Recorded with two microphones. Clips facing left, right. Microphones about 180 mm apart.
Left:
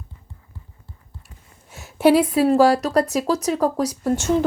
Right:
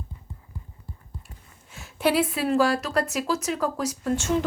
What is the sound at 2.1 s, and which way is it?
Speech, 40° left (ahead or behind).